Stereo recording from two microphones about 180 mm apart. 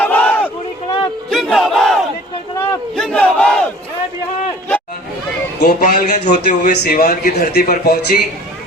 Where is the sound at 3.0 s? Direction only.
5° left (ahead or behind).